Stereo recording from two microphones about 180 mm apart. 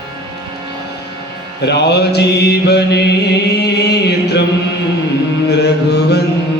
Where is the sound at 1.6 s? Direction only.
70° left (ahead or behind).